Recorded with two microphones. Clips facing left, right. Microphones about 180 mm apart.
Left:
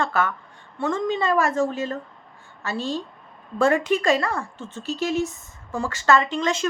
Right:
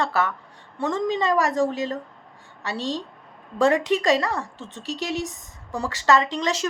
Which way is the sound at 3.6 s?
20° right (ahead or behind).